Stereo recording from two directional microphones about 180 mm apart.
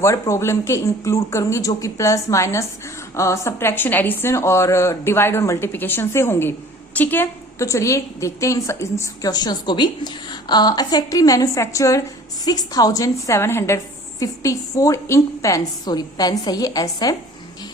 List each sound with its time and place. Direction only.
0.0 s a woman's voice: 15° left (ahead or behind)